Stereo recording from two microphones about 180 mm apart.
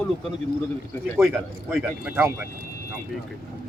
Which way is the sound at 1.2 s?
5° right (ahead or behind).